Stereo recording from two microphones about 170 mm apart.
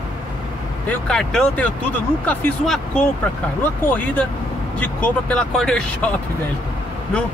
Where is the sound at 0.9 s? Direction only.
5° left (ahead or behind).